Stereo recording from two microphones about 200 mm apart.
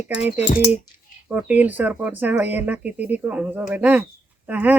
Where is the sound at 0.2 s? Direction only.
5° right (ahead or behind).